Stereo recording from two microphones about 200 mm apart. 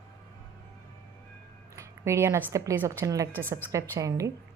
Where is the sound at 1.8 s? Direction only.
15° right (ahead or behind).